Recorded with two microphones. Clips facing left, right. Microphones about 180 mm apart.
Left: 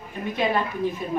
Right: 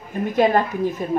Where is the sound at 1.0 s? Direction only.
45° right (ahead or behind).